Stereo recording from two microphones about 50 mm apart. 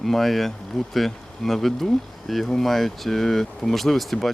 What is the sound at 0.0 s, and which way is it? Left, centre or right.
Speech, centre.